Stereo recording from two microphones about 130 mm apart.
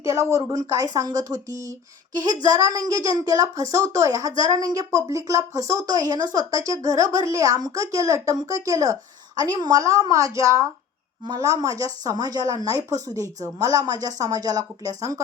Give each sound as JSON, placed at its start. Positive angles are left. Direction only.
{"t": 0.0, "sound": "a woman's voice", "side_deg": -25}